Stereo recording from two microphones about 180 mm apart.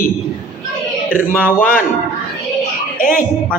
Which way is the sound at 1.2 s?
10° right (ahead or behind).